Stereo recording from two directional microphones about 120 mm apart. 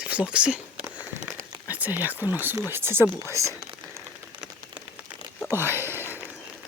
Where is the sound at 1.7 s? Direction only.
15° right (ahead or behind).